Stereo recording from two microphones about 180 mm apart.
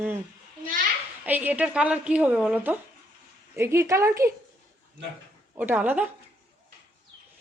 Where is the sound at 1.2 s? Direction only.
10° right (ahead or behind).